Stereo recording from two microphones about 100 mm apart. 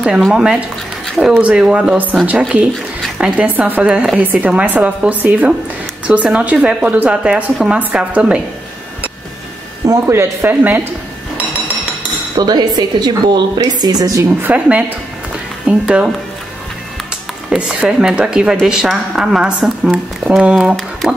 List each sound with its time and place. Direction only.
0.0 s speech: 5° right (ahead or behind)
9.8 s speech: 30° right (ahead or behind)
12.4 s a woman's voice: 45° right (ahead or behind)
14.2 s speech: 20° right (ahead or behind)
17.5 s a woman's voice: 10° right (ahead or behind)